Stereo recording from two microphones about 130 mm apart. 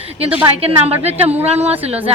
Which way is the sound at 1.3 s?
15° right (ahead or behind).